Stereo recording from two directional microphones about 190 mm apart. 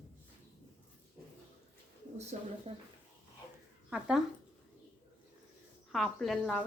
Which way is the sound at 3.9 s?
5° right (ahead or behind).